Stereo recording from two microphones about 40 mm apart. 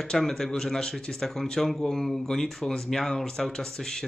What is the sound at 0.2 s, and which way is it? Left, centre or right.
Speech, centre.